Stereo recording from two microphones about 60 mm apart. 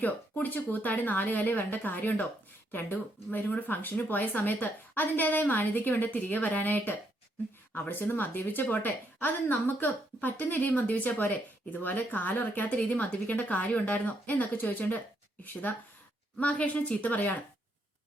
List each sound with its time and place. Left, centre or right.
0.0 s a woman's voice: left
3.3 s a woman's voice: left
16.4 s a woman's voice: left